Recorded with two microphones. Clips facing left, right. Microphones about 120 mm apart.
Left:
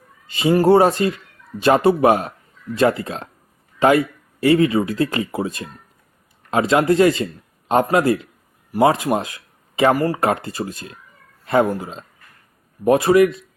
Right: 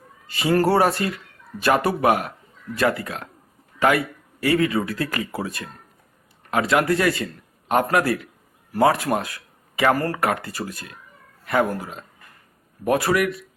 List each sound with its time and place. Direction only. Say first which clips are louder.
0.3 s speech: left 5 dB; 20° left (ahead or behind)